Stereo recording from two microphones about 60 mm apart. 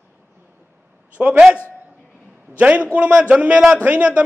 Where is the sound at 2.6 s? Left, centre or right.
Right.